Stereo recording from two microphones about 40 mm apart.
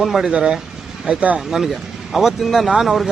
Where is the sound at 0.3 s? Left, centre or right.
Right.